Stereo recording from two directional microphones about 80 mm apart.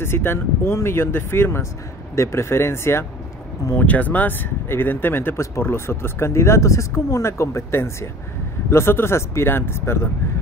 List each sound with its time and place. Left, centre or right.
0.0 s speech: left
3.8 s speech: left